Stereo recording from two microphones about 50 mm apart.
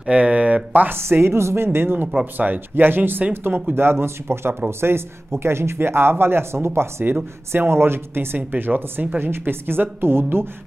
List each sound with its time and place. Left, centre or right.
0.0 s a sound: right
0.9 s speech: right
2.3 s speech: right